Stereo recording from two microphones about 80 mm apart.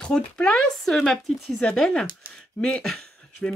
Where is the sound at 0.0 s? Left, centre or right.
Centre.